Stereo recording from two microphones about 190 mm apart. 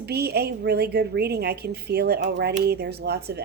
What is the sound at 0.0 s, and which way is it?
A woman's voice, 55° right (ahead or behind).